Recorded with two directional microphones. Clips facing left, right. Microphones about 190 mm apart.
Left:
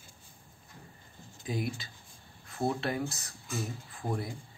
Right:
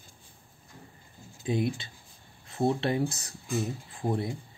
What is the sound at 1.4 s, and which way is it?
Speech, 25° right (ahead or behind).